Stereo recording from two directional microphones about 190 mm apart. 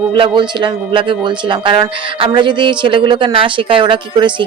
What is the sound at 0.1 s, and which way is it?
Speech, 25° right (ahead or behind).